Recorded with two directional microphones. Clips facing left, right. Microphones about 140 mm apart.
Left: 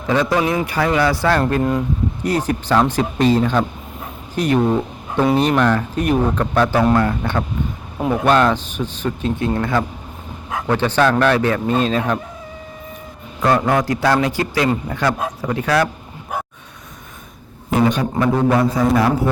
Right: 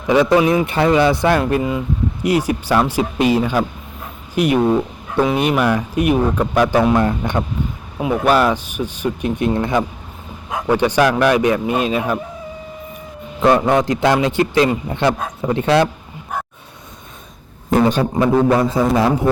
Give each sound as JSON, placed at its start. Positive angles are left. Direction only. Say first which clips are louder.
{"t": 0.1, "sound": "a man's voice", "louder": "right 4 dB", "side_deg": -15}
{"t": 1.4, "sound": "speech", "louder": "even", "side_deg": -10}
{"t": 7.9, "sound": "speech", "louder": "even", "side_deg": -5}
{"t": 13.4, "sound": "a man's voice", "louder": "right 3 dB", "side_deg": -20}
{"t": 17.8, "sound": "a man's voice", "louder": "right 2 dB", "side_deg": -30}